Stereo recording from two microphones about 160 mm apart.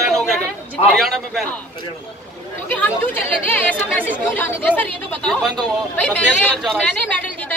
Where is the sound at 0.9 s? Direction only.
Centre (ahead or behind).